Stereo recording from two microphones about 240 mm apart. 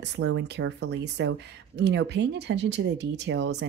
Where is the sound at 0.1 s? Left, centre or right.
Right.